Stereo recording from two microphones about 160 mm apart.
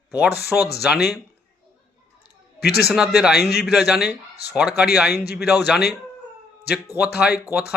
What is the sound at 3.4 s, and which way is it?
Speech, 90° left.